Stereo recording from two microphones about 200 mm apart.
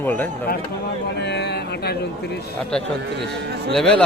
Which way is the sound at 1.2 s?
60° left (ahead or behind).